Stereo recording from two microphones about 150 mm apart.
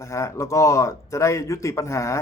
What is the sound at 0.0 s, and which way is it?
Speech, 20° left (ahead or behind).